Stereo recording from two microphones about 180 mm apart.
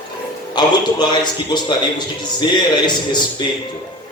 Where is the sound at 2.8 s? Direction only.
25° left (ahead or behind).